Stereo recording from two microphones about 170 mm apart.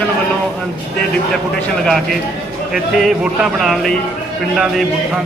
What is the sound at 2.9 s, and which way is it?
Speech, 5° right (ahead or behind).